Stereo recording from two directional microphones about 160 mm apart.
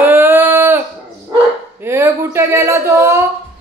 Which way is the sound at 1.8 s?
15° right (ahead or behind).